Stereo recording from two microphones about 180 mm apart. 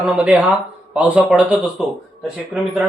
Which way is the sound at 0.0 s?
5° right (ahead or behind).